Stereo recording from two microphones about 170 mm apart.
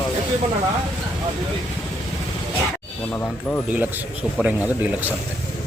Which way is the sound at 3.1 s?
10° left (ahead or behind).